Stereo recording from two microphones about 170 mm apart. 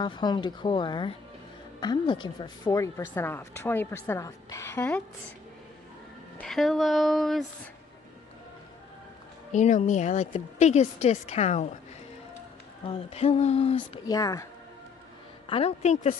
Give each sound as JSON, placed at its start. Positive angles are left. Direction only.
{"t": 0.0, "sound": "speech", "side_deg": 25}
{"t": 6.3, "sound": "speech", "side_deg": 0}
{"t": 9.5, "sound": "a woman's voice", "side_deg": 45}
{"t": 12.8, "sound": "a woman's voice", "side_deg": 35}
{"t": 14.0, "sound": "speech", "side_deg": 20}
{"t": 15.4, "sound": "a woman's voice", "side_deg": 35}